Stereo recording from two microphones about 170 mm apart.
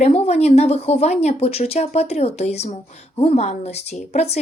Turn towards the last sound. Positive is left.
turn(degrees=40)  # may be behind; listen again after turning